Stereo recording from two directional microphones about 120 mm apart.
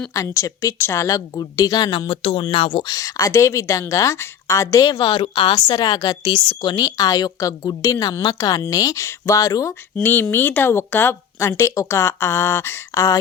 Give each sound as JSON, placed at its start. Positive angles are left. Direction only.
{"t": 0.1, "sound": "a woman's voice", "side_deg": 25}
{"t": 2.8, "sound": "a woman's voice", "side_deg": 30}
{"t": 10.0, "sound": "speech", "side_deg": 15}